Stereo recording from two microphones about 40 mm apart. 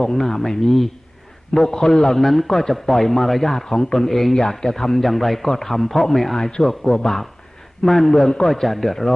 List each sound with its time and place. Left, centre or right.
0.0 s a man's voice: centre